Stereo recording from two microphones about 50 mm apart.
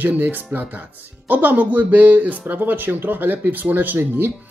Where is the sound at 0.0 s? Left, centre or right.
Right.